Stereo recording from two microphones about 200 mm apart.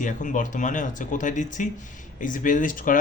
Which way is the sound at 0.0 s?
40° left (ahead or behind).